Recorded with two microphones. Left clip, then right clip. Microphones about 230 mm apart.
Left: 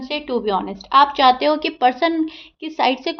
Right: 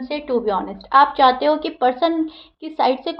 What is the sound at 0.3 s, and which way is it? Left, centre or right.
A woman's voice, left.